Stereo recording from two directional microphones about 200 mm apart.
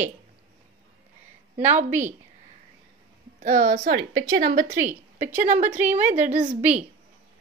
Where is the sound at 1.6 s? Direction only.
35° right (ahead or behind).